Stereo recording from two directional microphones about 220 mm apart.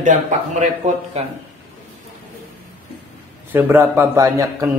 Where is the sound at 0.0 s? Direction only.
35° right (ahead or behind).